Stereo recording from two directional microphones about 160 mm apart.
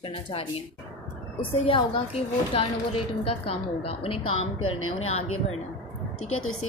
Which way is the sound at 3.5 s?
40° left (ahead or behind).